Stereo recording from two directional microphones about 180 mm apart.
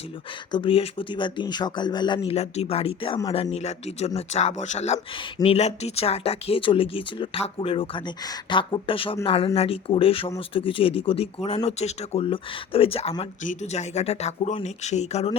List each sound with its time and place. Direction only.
0.5 s speech: 30° left (ahead or behind)
2.3 s speech: 35° left (ahead or behind)